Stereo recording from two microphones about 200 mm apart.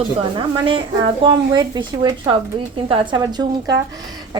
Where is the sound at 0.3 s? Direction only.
25° right (ahead or behind).